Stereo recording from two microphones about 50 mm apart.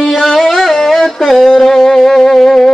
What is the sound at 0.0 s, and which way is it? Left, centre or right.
Music, centre.